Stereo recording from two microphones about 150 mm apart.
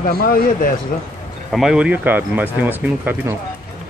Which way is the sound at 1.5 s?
5° right (ahead or behind).